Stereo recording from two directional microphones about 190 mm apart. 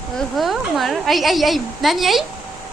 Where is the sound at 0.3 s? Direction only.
Centre (ahead or behind).